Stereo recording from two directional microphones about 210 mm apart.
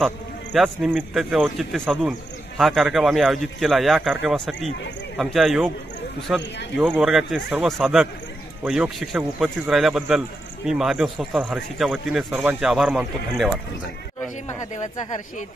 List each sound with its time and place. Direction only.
0.0 s a man's voice: centre (ahead or behind)
14.8 s speech: 35° left (ahead or behind)